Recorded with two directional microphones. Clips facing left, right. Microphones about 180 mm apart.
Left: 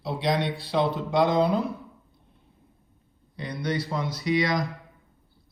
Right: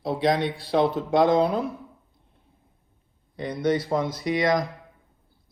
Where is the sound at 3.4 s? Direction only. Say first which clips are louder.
Right 5 dB; 50° right (ahead or behind).